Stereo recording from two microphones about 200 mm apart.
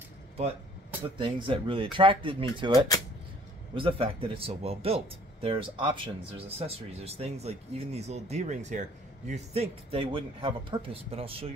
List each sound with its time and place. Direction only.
1.1 s speech: 25° right (ahead or behind)